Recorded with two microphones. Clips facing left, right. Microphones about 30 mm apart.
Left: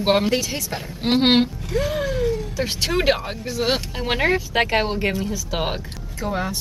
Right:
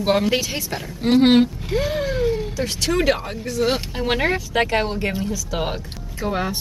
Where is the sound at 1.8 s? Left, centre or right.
Centre.